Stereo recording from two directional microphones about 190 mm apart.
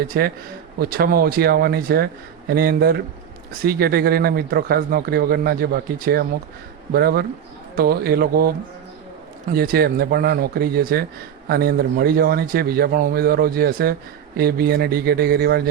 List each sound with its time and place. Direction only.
0.1 s speech: 55° right (ahead or behind)